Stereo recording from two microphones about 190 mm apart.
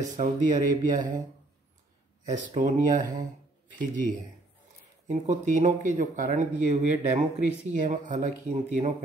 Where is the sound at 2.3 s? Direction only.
40° right (ahead or behind).